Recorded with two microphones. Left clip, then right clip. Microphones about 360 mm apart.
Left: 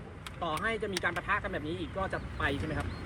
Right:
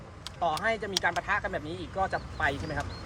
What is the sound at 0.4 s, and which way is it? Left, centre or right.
A man's voice, centre.